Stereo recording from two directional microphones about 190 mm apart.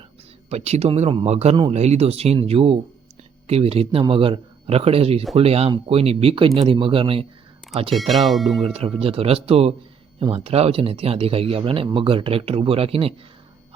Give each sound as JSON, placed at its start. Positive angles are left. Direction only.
{"t": 0.5, "sound": "speech", "side_deg": -35}
{"t": 7.9, "sound": "speech", "side_deg": 0}
{"t": 8.6, "sound": "speech", "side_deg": -30}